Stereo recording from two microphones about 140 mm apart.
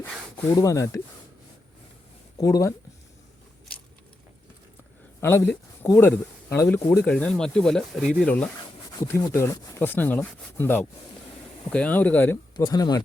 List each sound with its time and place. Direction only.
0.5 s speech: 25° left (ahead or behind)
2.4 s speech: 25° left (ahead or behind)
5.2 s speech: 15° left (ahead or behind); by 8.3 s centre (ahead or behind)
9.0 s speech: 20° left (ahead or behind)
12.5 s speech: 30° left (ahead or behind)